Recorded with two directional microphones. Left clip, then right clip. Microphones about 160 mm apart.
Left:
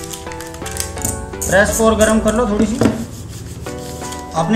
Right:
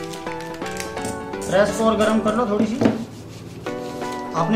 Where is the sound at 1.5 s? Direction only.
25° left (ahead or behind).